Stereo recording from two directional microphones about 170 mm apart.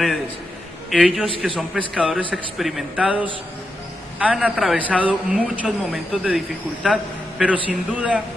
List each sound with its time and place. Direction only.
0.8 s a man's voice: centre (ahead or behind)